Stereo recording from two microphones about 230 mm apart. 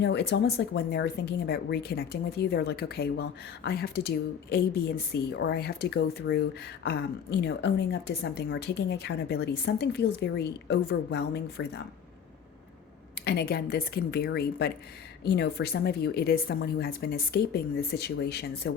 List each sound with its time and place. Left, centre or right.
0.0 s speech: left
13.2 s speech: left